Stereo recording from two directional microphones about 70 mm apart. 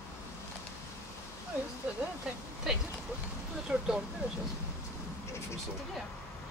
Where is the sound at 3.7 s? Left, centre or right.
Centre.